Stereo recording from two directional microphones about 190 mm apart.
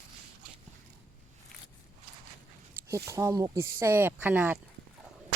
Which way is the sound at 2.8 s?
15° right (ahead or behind).